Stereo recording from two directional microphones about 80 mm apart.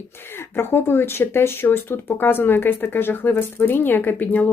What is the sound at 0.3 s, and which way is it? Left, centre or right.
Speech, left.